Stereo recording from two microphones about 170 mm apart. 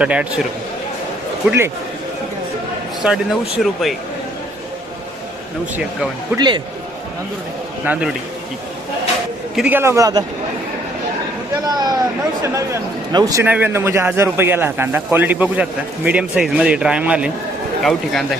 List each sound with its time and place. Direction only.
0.0 s a man's voice: 5° right (ahead or behind)
1.5 s a man's voice: 15° right (ahead or behind)
3.0 s speech: 5° right (ahead or behind)
6.3 s speech: 25° right (ahead or behind)
7.9 s a man's voice: 10° right (ahead or behind)
9.6 s a man's voice: 10° right (ahead or behind)
11.6 s a man's voice: 25° right (ahead or behind); by 18.3 s centre (ahead or behind)